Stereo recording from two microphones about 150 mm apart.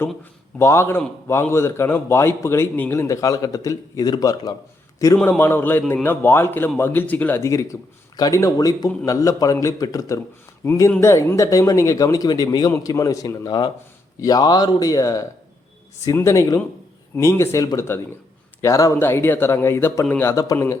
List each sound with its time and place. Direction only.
0.6 s a man's voice: 20° left (ahead or behind)